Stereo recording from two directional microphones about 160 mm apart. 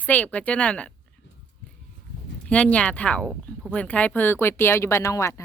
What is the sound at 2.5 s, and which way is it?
Speech, 5° left (ahead or behind).